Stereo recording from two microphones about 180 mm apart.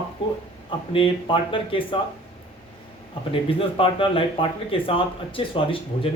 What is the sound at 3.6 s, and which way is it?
A man's voice, 30° left (ahead or behind).